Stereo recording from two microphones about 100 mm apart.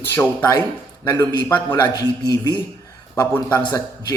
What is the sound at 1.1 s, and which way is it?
Speech, 25° left (ahead or behind).